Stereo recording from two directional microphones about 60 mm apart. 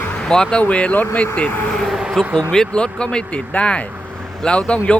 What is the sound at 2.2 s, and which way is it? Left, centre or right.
Speech, centre.